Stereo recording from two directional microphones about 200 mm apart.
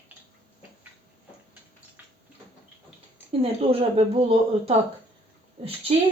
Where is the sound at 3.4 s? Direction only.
30° right (ahead or behind).